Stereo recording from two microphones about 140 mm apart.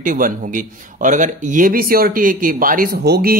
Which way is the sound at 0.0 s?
70° right (ahead or behind).